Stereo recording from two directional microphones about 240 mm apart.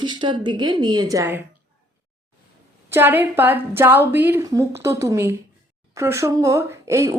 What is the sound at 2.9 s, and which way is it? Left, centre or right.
A woman's voice, centre.